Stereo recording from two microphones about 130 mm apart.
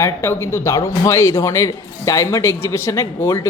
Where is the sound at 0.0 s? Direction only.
20° left (ahead or behind).